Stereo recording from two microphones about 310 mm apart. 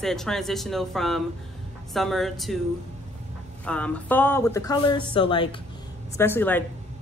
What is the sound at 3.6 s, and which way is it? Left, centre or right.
Speech, centre.